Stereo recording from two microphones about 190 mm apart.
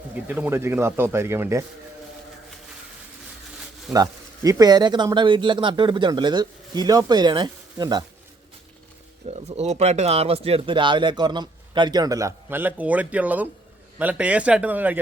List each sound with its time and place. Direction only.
0.1 s speech: 10° right (ahead or behind)
3.9 s speech: 20° right (ahead or behind)
9.3 s speech: 35° right (ahead or behind); by 15.0 s 10° right (ahead or behind)